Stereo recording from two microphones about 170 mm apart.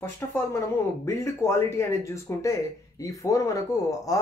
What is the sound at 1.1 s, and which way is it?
Speech, 15° left (ahead or behind).